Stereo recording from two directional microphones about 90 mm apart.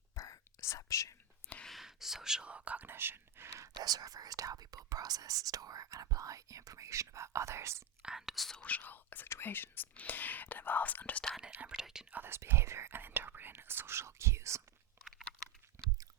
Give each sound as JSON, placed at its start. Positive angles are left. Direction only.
{"t": 0.2, "sound": "whispering", "side_deg": 35}
{"t": 1.6, "sound": "speech", "side_deg": 0}
{"t": 3.8, "sound": "speech", "side_deg": -45}
{"t": 8.0, "sound": "speech", "side_deg": -5}
{"t": 8.6, "sound": "speech", "side_deg": 20}
{"t": 11.3, "sound": "speech", "side_deg": -5}
{"t": 12.1, "sound": "speech", "side_deg": -25}
{"t": 15.0, "sound": "crunch", "side_deg": -25}